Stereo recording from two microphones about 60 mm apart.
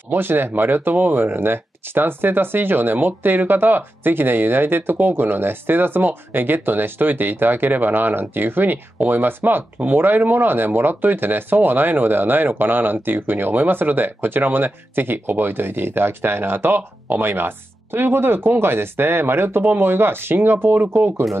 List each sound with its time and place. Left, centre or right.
0.1 s speech: right